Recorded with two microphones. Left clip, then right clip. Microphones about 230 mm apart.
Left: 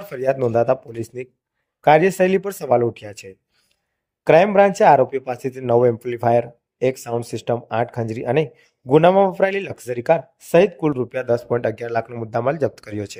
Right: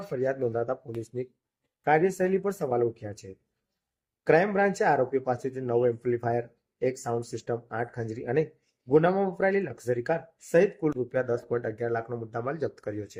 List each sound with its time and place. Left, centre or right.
0.1 s speech: left